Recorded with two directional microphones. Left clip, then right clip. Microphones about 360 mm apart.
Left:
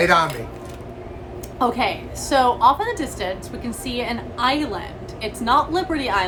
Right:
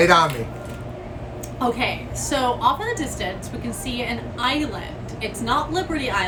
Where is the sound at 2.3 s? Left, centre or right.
Centre.